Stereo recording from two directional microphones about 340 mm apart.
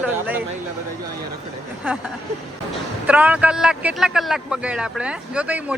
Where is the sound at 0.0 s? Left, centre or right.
Centre.